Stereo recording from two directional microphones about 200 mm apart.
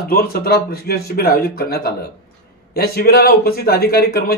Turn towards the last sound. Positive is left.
turn(degrees=50)  # may be behind; listen again after turning